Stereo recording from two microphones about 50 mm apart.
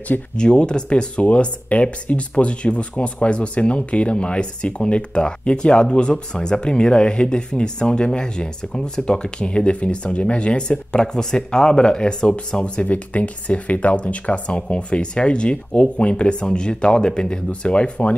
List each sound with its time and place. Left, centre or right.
0.4 s speech: centre
12.8 s speech: left